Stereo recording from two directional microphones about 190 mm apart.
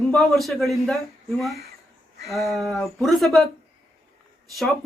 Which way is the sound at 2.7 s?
Centre (ahead or behind).